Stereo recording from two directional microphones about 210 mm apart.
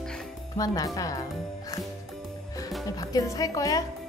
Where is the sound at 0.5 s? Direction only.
15° left (ahead or behind).